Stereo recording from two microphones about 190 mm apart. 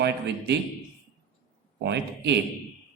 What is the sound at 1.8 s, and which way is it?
Speech, 65° right (ahead or behind).